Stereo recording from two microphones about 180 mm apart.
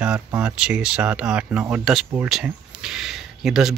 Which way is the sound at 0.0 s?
5° right (ahead or behind).